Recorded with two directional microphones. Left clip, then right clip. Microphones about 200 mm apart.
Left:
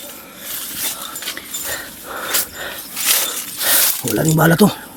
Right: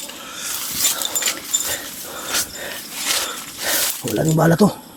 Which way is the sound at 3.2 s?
10° left (ahead or behind).